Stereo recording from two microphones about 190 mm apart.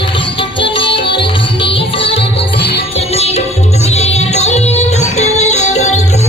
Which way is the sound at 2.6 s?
60° left (ahead or behind).